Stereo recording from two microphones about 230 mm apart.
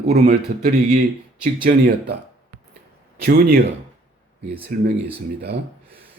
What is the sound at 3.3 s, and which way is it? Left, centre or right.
Speech, right.